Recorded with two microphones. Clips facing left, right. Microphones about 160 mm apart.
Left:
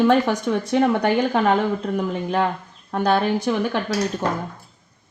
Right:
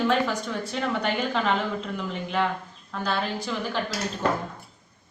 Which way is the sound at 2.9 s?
65° left (ahead or behind).